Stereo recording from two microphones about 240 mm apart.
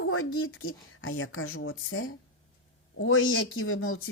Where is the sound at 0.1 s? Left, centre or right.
Left.